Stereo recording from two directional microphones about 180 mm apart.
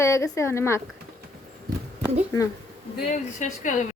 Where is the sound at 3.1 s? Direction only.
40° left (ahead or behind).